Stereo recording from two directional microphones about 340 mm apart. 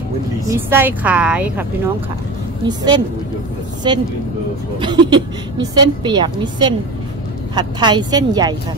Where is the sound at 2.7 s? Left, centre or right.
Centre.